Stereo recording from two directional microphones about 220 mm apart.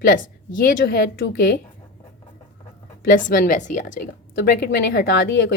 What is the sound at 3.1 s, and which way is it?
A woman's voice, 40° left (ahead or behind).